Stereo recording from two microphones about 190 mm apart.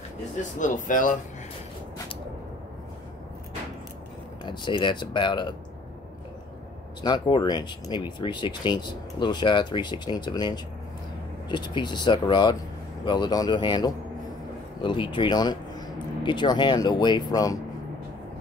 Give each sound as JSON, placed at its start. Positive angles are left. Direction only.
{"t": 0.4, "sound": "speech", "side_deg": 40}
{"t": 4.5, "sound": "speech", "side_deg": 25}
{"t": 7.0, "sound": "speech", "side_deg": 25}